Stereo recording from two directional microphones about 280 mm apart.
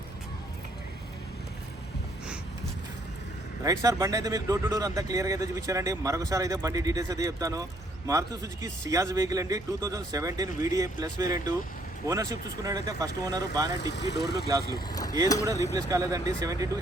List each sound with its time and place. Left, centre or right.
3.6 s speech: centre
13.7 s speech: left
15.7 s speech: centre